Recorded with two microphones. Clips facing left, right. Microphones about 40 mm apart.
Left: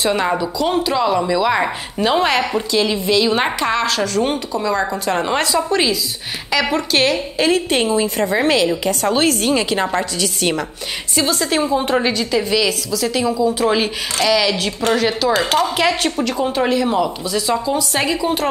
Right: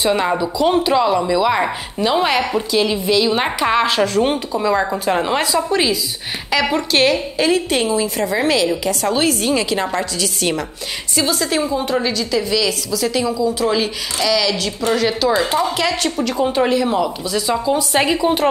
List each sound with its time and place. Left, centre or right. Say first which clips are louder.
0.0 s a woman's voice: right 1 dB; centre
3.7 s a woman's voice: right 3 dB; centre
7.7 s a woman's voice: left 1 dB; centre
11.7 s a woman's voice: left 2 dB; left
12.6 s a woman's voice: even; centre
13.3 s a woman's voice: left 1 dB; centre
15.0 s a woman's voice: right 2 dB; centre
15.3 s speech: left 1 dB; left
15.7 s a woman's voice: left 2 dB; centre
16.3 s a woman's voice: right 3 dB; centre
17.7 s a woman's voice: right 2 dB; centre